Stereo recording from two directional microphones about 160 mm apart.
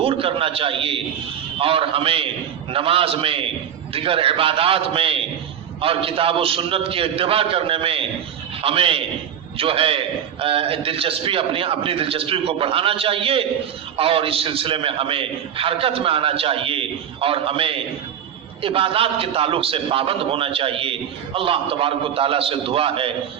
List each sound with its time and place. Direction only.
0.0 s a man's voice: 35° right (ahead or behind)